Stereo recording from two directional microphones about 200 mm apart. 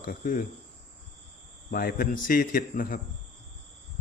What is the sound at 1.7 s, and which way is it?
Speech, 45° left (ahead or behind).